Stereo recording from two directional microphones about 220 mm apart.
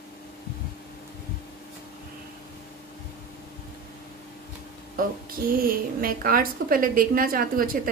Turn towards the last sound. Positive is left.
turn(degrees=-40)  # may be behind; listen again after turning